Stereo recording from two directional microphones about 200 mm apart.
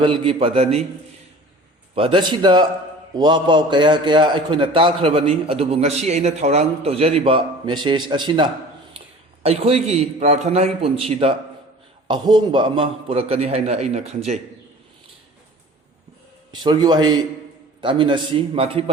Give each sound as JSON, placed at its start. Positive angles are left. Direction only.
{"t": 0.0, "sound": "a man's voice", "side_deg": -25}
{"t": 2.0, "sound": "a man's voice", "side_deg": -25}
{"t": 16.5, "sound": "a man's voice", "side_deg": -20}